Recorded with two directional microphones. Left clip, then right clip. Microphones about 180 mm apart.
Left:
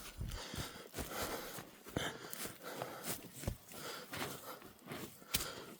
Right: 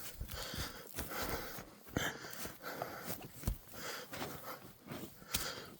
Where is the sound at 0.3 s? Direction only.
25° right (ahead or behind).